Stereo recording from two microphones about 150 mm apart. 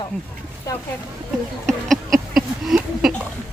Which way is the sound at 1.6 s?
5° left (ahead or behind).